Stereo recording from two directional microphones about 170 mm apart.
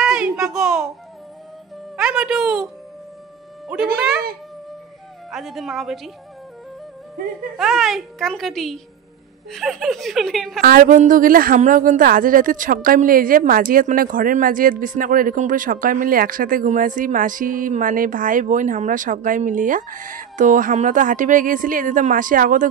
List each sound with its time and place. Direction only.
0.0 s a sound: 5° right (ahead or behind)
2.0 s a woman's voice: 5° right (ahead or behind)
3.7 s a child's voice: 5° right (ahead or behind)
5.3 s a child's voice: centre (ahead or behind)
7.5 s a child's voice: centre (ahead or behind)
10.6 s a woman's voice: 60° right (ahead or behind)